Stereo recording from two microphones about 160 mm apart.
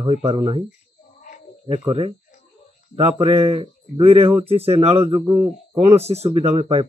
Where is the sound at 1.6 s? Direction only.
35° right (ahead or behind).